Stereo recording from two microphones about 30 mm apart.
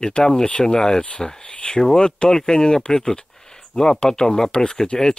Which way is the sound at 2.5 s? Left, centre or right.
Left.